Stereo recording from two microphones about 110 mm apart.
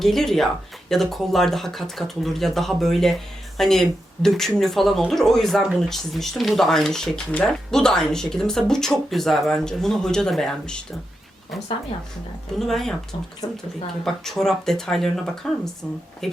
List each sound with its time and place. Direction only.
0.0 s speech: centre (ahead or behind)
12.5 s speech: 5° left (ahead or behind)
13.4 s speech: 35° left (ahead or behind)
14.0 s speech: 5° left (ahead or behind)